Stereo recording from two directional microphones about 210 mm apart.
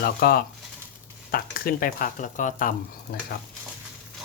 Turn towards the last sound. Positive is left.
turn(degrees=40)  # may be behind; listen again after turning